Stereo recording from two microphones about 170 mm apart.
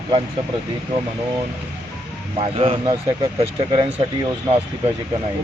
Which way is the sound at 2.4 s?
35° right (ahead or behind).